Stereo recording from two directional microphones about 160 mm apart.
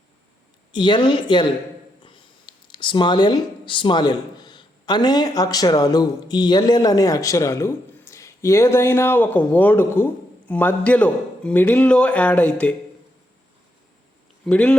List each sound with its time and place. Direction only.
0.7 s speech: 30° left (ahead or behind); by 12.7 s 10° left (ahead or behind)
14.4 s speech: 5° left (ahead or behind)